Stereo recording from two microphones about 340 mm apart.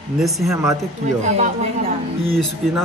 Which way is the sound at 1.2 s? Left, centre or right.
Centre.